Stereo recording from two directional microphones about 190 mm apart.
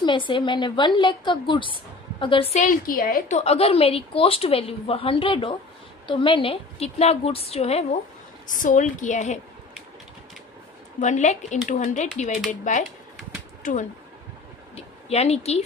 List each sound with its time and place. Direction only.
0.0 s a woman's voice: 25° left (ahead or behind)
2.6 s a woman's voice: 45° left (ahead or behind)
8.5 s a woman's voice: 45° left (ahead or behind)
11.0 s a woman's voice: 40° left (ahead or behind)
13.6 s a sound: 45° left (ahead or behind)
14.8 s a woman's voice: 35° left (ahead or behind)